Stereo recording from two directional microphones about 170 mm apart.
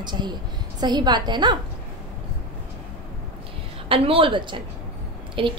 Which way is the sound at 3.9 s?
30° right (ahead or behind).